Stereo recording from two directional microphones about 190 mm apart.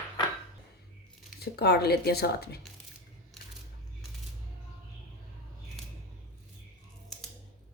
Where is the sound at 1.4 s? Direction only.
60° left (ahead or behind).